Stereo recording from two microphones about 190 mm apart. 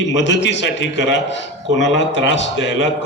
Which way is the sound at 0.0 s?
70° left (ahead or behind).